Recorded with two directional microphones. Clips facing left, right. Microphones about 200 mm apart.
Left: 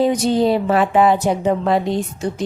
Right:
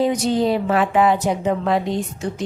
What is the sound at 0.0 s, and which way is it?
A woman's voice, 30° left (ahead or behind).